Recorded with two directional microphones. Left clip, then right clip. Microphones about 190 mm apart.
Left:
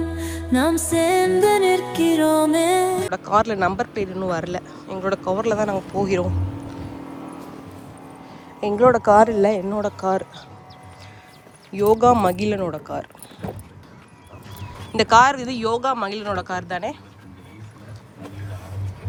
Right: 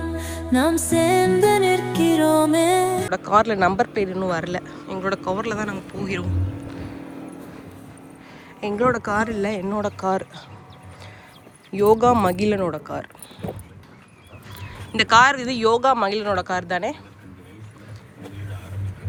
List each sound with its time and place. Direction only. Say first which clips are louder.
0.2 s music: right 1 dB; centre (ahead or behind)
3.2 s speech: right 2 dB; 15° left (ahead or behind); by 6.2 s 35° left (ahead or behind)
6.7 s music: even; 25° left (ahead or behind)
8.3 s speech: left 4 dB; 25° left (ahead or behind)
11.7 s a woman's voice: left 1 dB; 15° left (ahead or behind)
12.9 s a sound: left 1 dB; 15° left (ahead or behind)
14.9 s a woman's voice: left 1 dB; 25° left (ahead or behind)